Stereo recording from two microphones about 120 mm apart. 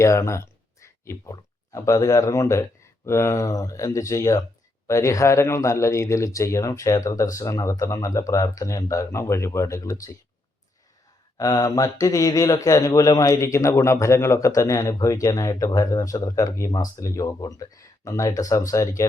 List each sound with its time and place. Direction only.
0.0 s speech: 25° left (ahead or behind)
11.3 s speech: 30° left (ahead or behind)